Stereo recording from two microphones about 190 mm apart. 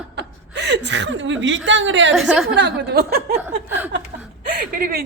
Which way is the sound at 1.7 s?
75° right (ahead or behind).